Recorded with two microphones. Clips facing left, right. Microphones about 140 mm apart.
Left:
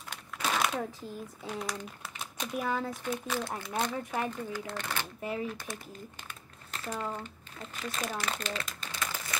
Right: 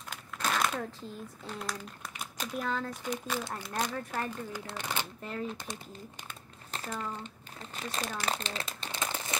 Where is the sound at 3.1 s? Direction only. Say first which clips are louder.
Left 1 dB; centre (ahead or behind).